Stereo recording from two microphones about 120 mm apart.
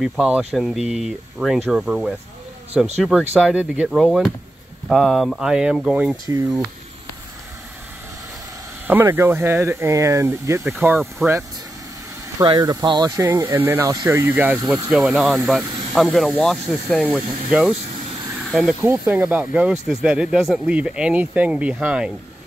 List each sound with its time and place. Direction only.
0.0 s speech: centre (ahead or behind)
6.2 s speech: 30° right (ahead or behind)
8.8 s speech: 15° right (ahead or behind)
10.7 s speech: 10° right (ahead or behind)
12.4 s speech: 35° right (ahead or behind); by 18.8 s centre (ahead or behind)
18.8 s speech: 20° right (ahead or behind)